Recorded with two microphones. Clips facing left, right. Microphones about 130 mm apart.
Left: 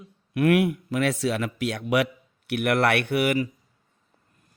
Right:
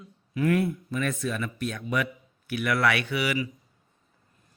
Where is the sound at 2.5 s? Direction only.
65° left (ahead or behind); by 3.5 s 50° left (ahead or behind).